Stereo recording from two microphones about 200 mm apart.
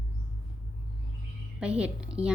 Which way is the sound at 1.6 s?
5° right (ahead or behind).